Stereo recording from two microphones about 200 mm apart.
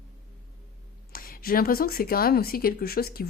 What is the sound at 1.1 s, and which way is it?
A woman's voice, 45° left (ahead or behind).